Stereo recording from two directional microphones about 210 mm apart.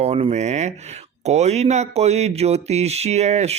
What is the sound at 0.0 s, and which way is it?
Speech, 30° right (ahead or behind).